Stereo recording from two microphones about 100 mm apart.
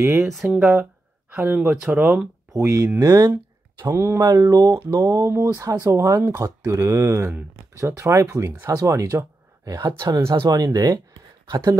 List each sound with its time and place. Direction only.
0.2 s speech: 5° right (ahead or behind)
2.5 s speech: 30° right (ahead or behind)
3.9 s speech: 25° right (ahead or behind)
4.2 s speech: 40° right (ahead or behind)